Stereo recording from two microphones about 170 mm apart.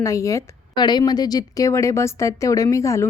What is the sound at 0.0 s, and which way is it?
A woman's voice, 20° left (ahead or behind).